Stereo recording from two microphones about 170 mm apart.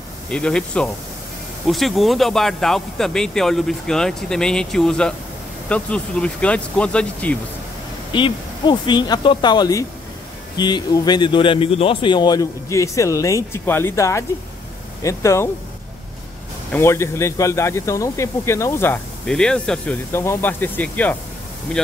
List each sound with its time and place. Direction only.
0.3 s speech: 5° left (ahead or behind)
8.1 s a man's voice: 25° left (ahead or behind)
16.7 s speech: 15° left (ahead or behind)